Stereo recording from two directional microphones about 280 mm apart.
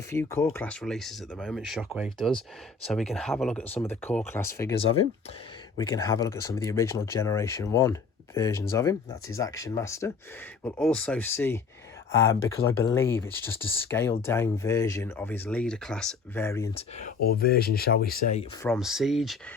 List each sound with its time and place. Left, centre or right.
0.1 s speech: centre
17.0 s speech: left
18.6 s speech: centre